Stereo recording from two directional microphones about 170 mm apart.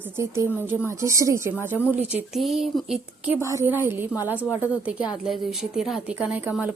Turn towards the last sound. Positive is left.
turn(degrees=-10)  # may be behind; listen again after turning